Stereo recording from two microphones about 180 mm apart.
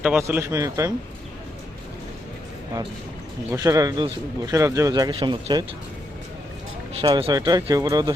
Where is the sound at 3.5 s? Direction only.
20° right (ahead or behind).